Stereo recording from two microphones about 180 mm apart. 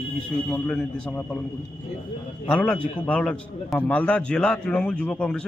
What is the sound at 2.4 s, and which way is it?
A man's voice, 5° left (ahead or behind).